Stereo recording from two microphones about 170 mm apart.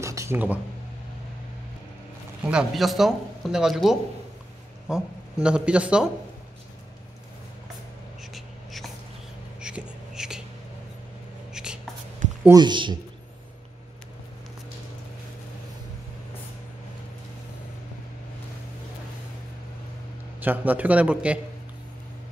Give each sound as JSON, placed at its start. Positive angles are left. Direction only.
{"t": 0.0, "sound": "a sound", "side_deg": -15}
{"t": 2.4, "sound": "speech", "side_deg": -5}
{"t": 8.3, "sound": "whispering", "side_deg": 0}
{"t": 11.5, "sound": "whispering", "side_deg": -5}
{"t": 12.4, "sound": "speech", "side_deg": -25}
{"t": 20.3, "sound": "a man's voice", "side_deg": -10}